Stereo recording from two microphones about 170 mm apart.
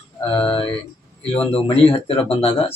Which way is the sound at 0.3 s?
30° left (ahead or behind).